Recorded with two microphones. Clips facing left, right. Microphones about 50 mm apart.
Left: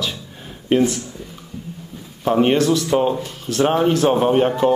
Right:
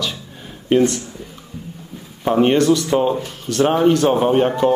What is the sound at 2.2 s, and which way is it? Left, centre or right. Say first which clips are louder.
Speech: right 2 dB; centre.